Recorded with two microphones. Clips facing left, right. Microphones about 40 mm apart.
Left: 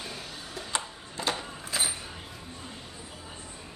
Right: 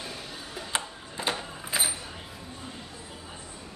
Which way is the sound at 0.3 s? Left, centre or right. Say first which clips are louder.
Right 1 dB; centre.